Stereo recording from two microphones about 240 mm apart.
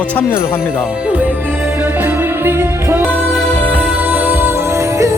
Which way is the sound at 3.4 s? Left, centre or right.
Centre.